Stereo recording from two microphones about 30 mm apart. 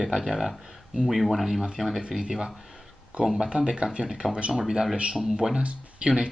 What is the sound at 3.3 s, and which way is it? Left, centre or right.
Speech, right.